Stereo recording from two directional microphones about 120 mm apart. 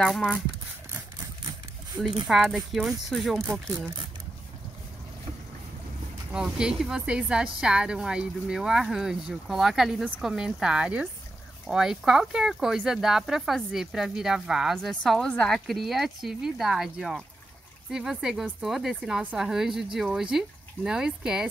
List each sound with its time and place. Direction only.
0.0 s speech: 5° left (ahead or behind)
2.2 s a woman's voice: centre (ahead or behind)
6.3 s a woman's voice: 5° right (ahead or behind)